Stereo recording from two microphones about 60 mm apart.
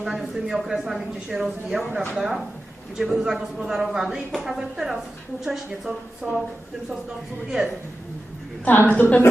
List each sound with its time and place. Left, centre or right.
0.0 s a woman's voice: centre
8.6 s a woman's voice: left